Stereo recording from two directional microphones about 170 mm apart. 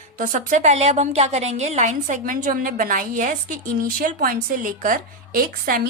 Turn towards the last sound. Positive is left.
turn(degrees=-55)  # may be behind; listen again after turning